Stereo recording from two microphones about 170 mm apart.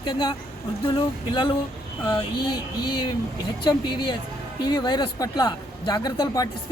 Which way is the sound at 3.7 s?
25° left (ahead or behind).